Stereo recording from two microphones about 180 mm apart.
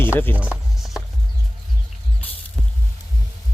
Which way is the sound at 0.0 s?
10° left (ahead or behind).